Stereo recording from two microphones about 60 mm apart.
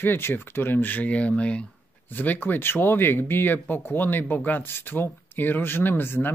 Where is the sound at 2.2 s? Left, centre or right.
Left.